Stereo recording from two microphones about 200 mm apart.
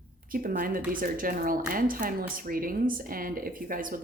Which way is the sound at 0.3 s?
45° right (ahead or behind).